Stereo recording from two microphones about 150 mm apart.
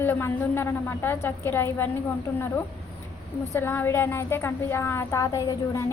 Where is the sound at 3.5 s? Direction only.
15° left (ahead or behind).